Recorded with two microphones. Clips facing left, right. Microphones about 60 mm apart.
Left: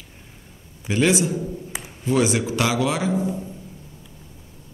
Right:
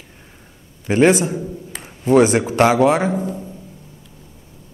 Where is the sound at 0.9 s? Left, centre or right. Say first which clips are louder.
Right 6 dB; right.